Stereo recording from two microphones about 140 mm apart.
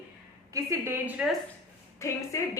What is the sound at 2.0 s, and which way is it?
Speech, 20° left (ahead or behind).